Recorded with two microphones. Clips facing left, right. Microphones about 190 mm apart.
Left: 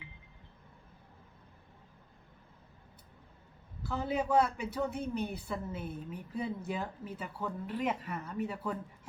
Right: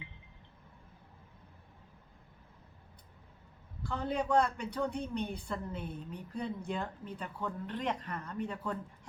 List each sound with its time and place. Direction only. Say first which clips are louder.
3.8 s a woman's voice: left 1 dB; 5° left (ahead or behind)